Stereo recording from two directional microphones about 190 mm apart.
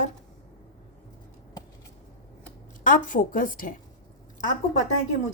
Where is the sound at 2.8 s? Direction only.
45° left (ahead or behind).